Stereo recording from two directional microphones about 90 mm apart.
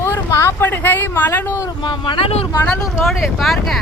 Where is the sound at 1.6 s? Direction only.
55° left (ahead or behind); by 2.5 s 85° left.